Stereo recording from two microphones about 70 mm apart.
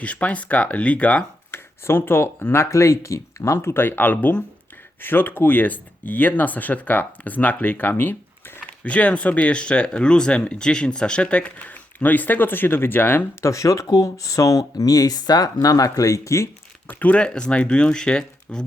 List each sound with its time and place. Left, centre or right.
0.0 s speech: centre
1.5 s speech: left
2.6 s speech: left
8.8 s speech: centre
13.4 s speech: left
16.8 s speech: left